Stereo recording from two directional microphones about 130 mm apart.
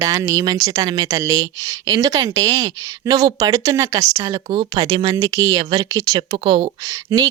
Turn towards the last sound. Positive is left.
turn(degrees=-25)  # may be behind; listen again after turning